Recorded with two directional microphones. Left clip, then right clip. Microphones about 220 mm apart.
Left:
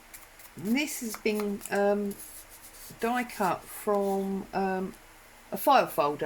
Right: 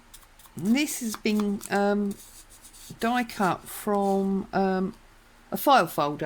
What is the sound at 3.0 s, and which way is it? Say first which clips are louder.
Speech: right 3 dB; 50° right (ahead or behind).